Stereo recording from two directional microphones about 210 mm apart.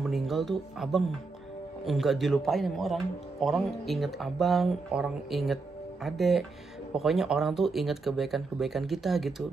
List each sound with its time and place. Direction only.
0.0 s a man's voice: centre (ahead or behind)